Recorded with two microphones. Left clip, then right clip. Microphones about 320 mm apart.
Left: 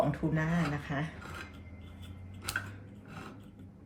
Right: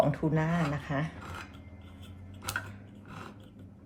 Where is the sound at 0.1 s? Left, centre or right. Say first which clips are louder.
Right 3 dB; right.